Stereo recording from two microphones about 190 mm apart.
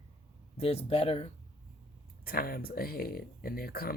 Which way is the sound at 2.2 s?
50° left (ahead or behind).